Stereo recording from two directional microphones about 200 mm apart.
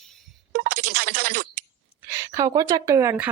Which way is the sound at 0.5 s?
50° right (ahead or behind).